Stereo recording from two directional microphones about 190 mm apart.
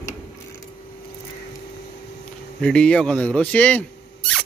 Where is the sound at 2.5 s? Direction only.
5° left (ahead or behind).